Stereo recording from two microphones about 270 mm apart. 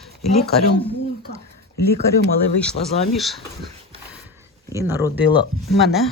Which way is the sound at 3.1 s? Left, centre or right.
Centre.